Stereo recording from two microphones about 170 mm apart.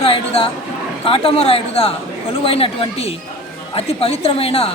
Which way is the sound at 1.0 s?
35° left (ahead or behind).